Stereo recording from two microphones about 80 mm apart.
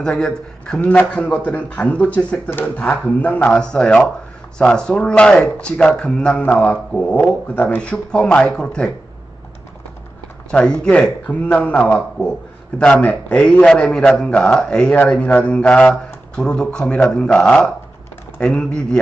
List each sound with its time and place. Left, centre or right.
0.0 s a man's voice: centre
10.5 s a man's voice: centre
11.3 s a man's voice: left